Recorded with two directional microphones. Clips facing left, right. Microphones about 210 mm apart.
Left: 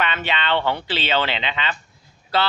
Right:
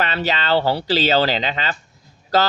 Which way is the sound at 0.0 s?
35° right (ahead or behind).